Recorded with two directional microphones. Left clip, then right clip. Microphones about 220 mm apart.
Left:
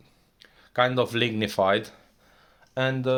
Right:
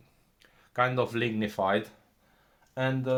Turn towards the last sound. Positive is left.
turn(degrees=45)  # may be behind; listen again after turning